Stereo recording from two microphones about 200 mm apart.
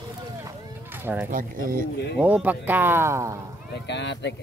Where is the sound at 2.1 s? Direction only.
5° right (ahead or behind).